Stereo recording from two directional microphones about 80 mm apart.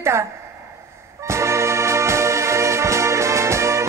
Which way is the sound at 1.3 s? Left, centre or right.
Right.